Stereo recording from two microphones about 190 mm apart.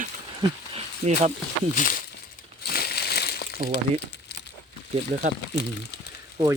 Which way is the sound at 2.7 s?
55° left (ahead or behind).